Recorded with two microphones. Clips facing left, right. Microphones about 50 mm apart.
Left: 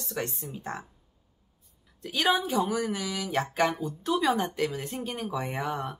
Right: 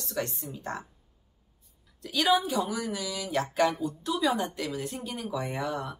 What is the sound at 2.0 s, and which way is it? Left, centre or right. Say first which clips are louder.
Speech: right 1 dB; left.